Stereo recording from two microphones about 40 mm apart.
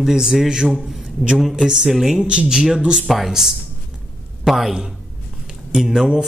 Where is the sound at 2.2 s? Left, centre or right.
Right.